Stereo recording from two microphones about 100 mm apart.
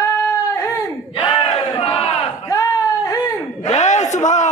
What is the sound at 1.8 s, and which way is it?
Battle cry, 75° left (ahead or behind).